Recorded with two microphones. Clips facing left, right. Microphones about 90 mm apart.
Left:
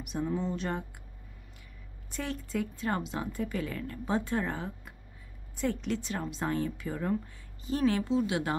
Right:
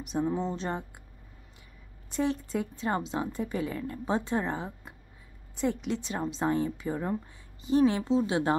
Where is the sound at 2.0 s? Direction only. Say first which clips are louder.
Right 7 dB; 25° right (ahead or behind).